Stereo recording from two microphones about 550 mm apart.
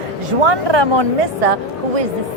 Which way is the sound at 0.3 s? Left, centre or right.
Right.